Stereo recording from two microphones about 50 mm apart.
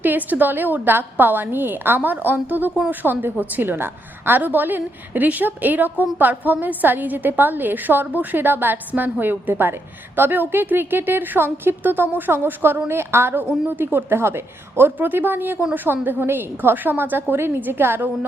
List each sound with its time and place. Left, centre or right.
0.0 s a woman's voice: right
14.9 s a woman's voice: right
17.3 s a woman's voice: right